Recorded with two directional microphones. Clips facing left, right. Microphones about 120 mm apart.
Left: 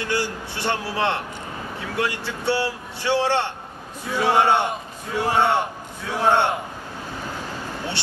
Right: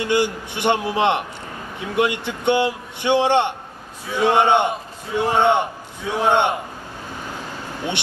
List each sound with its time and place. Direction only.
0.0 s a man's voice: 20° right (ahead or behind)